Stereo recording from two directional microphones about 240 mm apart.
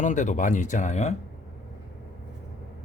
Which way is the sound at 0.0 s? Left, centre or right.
Left.